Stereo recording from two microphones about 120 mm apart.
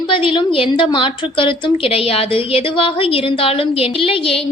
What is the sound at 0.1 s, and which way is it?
A woman's voice, 45° left (ahead or behind).